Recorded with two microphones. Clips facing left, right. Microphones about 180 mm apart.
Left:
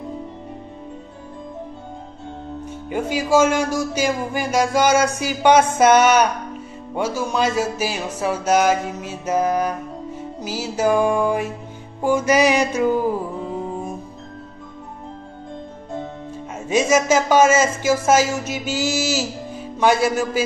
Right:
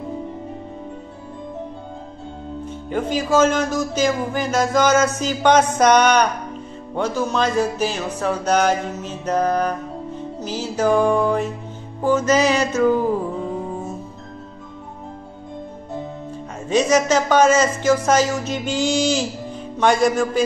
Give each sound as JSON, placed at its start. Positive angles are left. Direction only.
{"t": 2.9, "sound": "speech", "side_deg": 10}
{"t": 16.6, "sound": "speech", "side_deg": 10}
{"t": 19.8, "sound": "music", "side_deg": 5}